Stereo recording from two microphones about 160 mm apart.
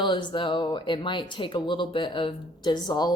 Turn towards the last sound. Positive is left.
turn(degrees=25)  # may be behind; listen again after turning